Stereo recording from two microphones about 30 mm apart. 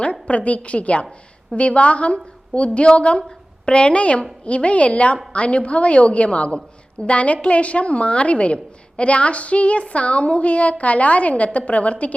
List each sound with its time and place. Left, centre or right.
0.0 s a woman's voice: left
4.4 s a woman's voice: left